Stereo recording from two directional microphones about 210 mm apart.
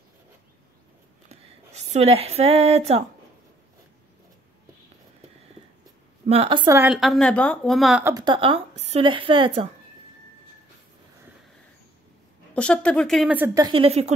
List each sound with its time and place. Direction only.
1.3 s speech: 30° right (ahead or behind)
6.2 s speech: 30° right (ahead or behind)
6.8 s a woman's voice: centre (ahead or behind)
8.0 s speech: 20° right (ahead or behind)
12.5 s a woman's voice: 5° left (ahead or behind)
13.7 s speech: 25° right (ahead or behind)